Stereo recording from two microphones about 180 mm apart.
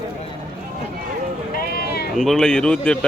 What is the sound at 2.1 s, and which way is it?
Speech, centre (ahead or behind).